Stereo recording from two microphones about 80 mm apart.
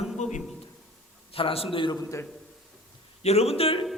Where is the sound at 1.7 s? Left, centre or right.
Left.